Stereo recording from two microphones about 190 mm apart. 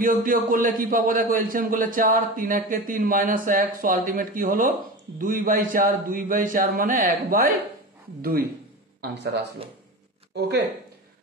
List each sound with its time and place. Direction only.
0.0 s a man's voice: 45° right (ahead or behind)